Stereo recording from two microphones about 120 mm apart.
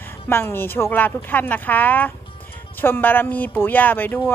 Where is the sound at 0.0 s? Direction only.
20° left (ahead or behind).